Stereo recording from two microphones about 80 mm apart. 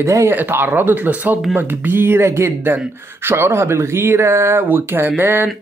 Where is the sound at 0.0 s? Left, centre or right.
Right.